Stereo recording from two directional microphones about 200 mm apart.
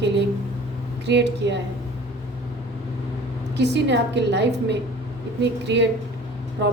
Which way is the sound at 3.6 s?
60° right (ahead or behind).